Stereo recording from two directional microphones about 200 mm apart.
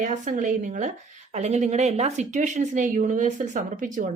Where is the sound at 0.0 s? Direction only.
40° right (ahead or behind).